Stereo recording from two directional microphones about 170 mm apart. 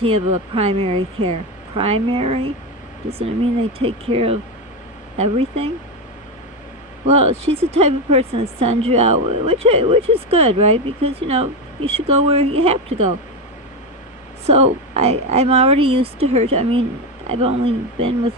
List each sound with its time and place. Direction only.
0.0 s speech: 35° right (ahead or behind)
3.8 s speech: 35° right (ahead or behind)
7.1 s speech: 35° right (ahead or behind)
14.4 s speech: 40° right (ahead or behind)